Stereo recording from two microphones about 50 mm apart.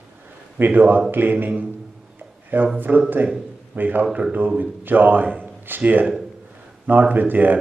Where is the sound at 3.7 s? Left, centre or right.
Right.